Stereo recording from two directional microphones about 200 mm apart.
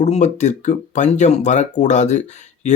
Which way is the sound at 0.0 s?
35° left (ahead or behind).